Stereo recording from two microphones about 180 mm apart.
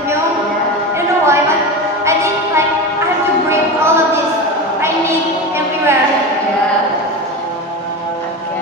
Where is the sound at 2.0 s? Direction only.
15° right (ahead or behind).